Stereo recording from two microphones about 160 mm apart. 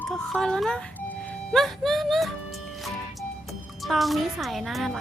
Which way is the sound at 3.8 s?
Centre (ahead or behind).